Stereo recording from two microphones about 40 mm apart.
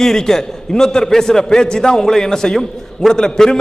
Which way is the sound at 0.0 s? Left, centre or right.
Centre.